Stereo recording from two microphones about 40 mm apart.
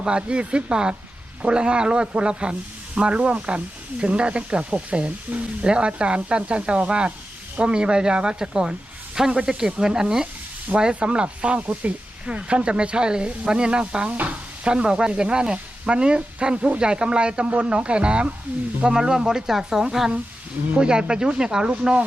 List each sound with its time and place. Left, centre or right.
0.0 s speech: right
14.1 s speech: right